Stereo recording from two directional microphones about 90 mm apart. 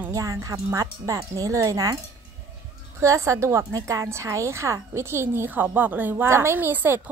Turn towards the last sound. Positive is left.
turn(degrees=-20)  # may be behind; listen again after turning